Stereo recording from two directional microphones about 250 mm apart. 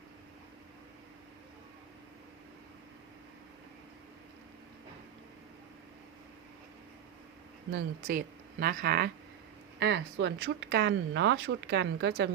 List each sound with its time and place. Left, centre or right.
7.7 s speech: right